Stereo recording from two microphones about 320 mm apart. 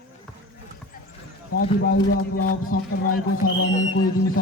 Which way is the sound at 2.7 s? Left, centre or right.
Left.